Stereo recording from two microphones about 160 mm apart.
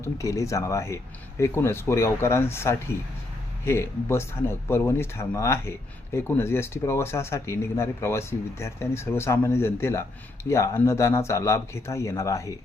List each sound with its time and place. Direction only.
0.0 s speech: 20° left (ahead or behind)